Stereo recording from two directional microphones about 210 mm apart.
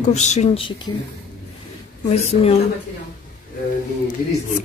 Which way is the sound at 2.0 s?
30° left (ahead or behind).